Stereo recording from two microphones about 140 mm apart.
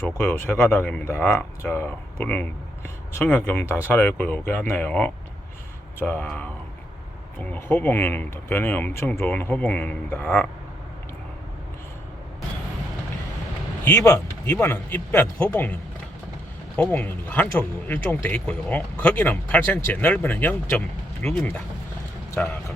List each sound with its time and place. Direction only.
0.2 s speech: 15° left (ahead or behind)
13.8 s speech: 20° left (ahead or behind)
22.4 s speech: 10° left (ahead or behind)